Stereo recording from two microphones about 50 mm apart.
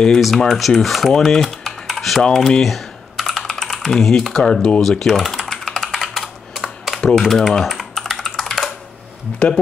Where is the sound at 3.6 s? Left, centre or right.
Centre.